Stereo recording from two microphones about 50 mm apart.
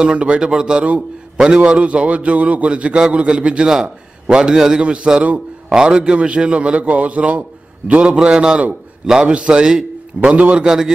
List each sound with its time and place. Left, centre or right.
0.0 s a man's voice: right
0.8 s a man's voice: right
1.4 s a man's voice: centre
10.3 s a man's voice: right